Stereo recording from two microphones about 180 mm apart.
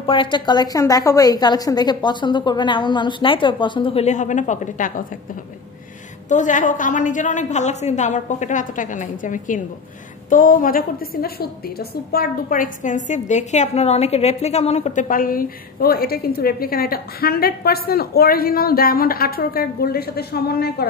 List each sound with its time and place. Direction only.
0.0 s a woman's voice: 30° left (ahead or behind); by 20.8 s 60° left (ahead or behind)